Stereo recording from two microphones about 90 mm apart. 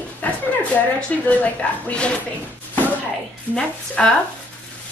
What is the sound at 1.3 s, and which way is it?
Speech, 15° left (ahead or behind).